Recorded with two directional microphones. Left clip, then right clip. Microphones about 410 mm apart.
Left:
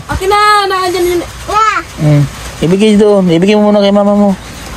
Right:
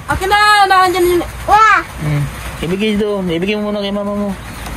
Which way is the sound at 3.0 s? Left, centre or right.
Left.